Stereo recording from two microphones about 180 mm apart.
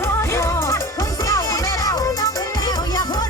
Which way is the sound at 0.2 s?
15° left (ahead or behind).